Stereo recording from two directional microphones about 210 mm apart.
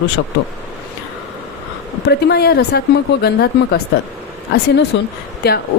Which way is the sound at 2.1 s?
50° left (ahead or behind).